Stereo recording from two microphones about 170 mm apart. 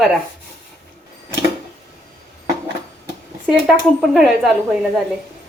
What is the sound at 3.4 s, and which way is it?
A woman's voice, centre (ahead or behind).